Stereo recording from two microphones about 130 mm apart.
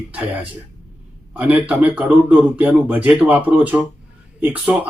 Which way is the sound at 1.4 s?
10° right (ahead or behind).